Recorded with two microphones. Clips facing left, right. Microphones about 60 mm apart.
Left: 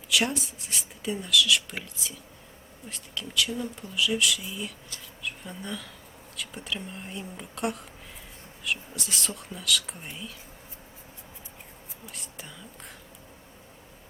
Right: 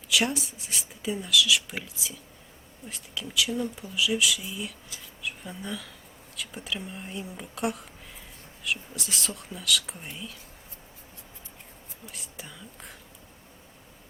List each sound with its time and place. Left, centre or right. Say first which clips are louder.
0.1 s speech: even; centre
12.0 s speech: even; centre